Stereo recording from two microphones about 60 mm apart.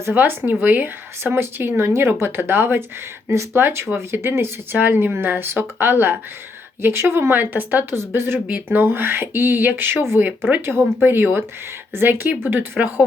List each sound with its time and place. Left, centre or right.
0.1 s speech: right